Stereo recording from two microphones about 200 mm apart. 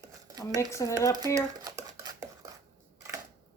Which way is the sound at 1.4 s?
15° right (ahead or behind).